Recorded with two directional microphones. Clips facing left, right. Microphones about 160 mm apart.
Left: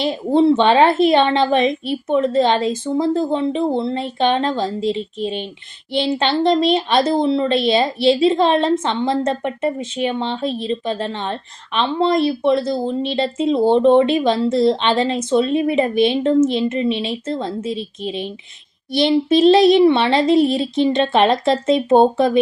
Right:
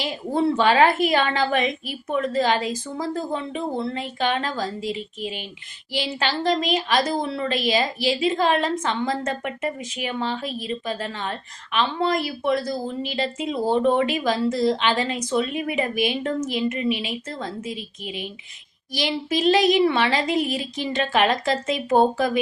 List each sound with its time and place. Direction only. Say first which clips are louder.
0.0 s a woman's voice: left 8 dB; 25° left (ahead or behind)